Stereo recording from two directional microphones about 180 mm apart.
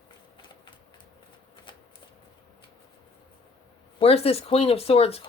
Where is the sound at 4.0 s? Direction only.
35° left (ahead or behind).